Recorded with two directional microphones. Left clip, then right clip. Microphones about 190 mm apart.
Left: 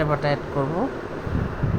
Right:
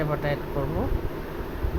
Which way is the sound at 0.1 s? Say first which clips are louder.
Left 5 dB; 20° left (ahead or behind).